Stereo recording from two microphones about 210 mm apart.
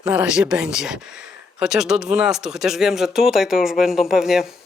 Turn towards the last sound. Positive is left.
turn(degrees=0)  # may be behind; listen again after turning